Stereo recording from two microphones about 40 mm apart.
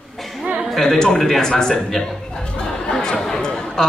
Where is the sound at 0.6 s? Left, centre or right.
Centre.